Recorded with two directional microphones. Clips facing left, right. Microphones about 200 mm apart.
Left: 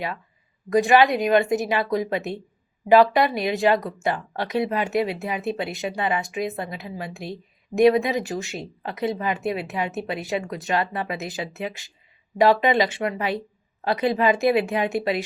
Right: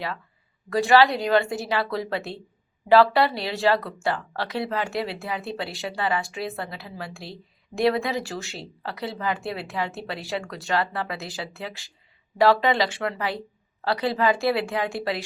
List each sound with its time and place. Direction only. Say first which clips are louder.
0.7 s a woman's voice: left 1 dB; 20° left (ahead or behind)